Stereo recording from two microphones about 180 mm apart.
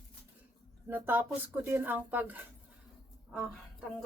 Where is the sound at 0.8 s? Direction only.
10° right (ahead or behind).